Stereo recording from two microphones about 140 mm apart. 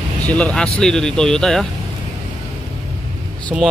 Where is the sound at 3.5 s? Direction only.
5° right (ahead or behind).